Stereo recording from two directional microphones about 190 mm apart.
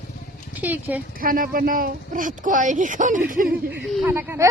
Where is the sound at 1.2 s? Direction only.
50° right (ahead or behind).